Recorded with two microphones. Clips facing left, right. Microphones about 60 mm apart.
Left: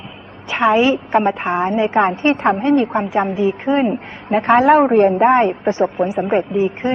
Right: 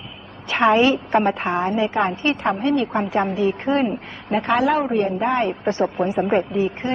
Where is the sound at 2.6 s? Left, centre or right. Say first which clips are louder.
Left 5 dB; left; by 3.8 s centre.